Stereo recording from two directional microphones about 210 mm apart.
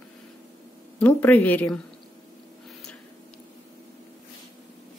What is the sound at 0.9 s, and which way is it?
Speech, 5° left (ahead or behind).